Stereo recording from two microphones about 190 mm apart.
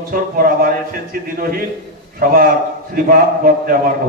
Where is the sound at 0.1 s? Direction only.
50° right (ahead or behind).